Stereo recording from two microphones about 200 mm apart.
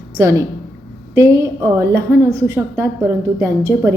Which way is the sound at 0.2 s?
15° right (ahead or behind).